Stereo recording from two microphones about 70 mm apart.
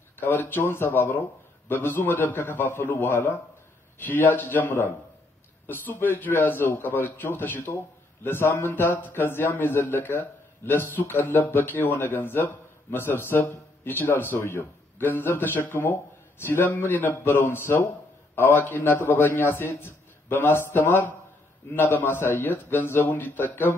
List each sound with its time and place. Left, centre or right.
0.2 s a man's voice: left